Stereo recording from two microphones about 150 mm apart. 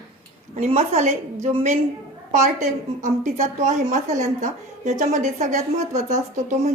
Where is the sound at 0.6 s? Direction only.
45° right (ahead or behind).